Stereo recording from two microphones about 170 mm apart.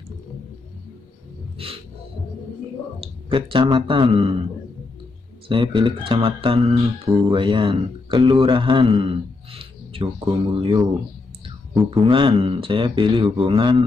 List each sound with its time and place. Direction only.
1.6 s music: 35° right (ahead or behind)
3.0 s speech: 30° right (ahead or behind)
5.5 s a man's voice: 30° right (ahead or behind)
11.9 s speech: 30° right (ahead or behind)